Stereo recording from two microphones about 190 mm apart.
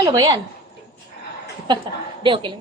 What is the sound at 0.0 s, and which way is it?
Speech, 20° right (ahead or behind).